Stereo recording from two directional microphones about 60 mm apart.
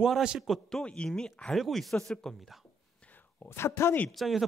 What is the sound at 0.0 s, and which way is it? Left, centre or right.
Speech, centre.